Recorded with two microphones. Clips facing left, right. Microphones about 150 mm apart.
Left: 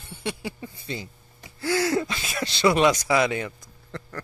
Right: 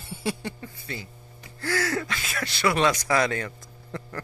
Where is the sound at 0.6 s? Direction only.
20° left (ahead or behind).